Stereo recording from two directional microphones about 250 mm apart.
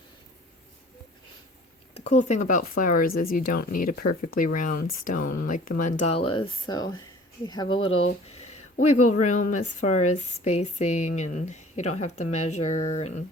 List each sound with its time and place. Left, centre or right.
1.9 s speech: left
8.3 s a sound: left
8.8 s speech: left
9.0 s a woman's voice: left